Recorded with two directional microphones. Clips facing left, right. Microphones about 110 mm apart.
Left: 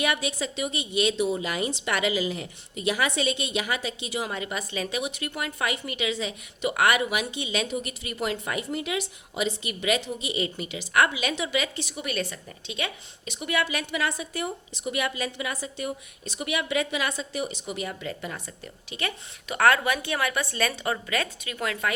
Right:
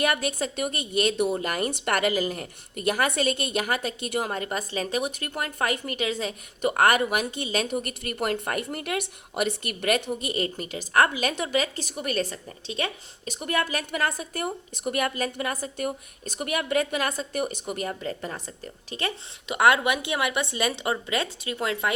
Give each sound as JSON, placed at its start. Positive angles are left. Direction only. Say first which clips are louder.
{"t": 0.0, "sound": "a woman's voice", "louder": "right 2 dB", "side_deg": -45}
{"t": 19.5, "sound": "a woman's voice", "louder": "right 1 dB", "side_deg": -20}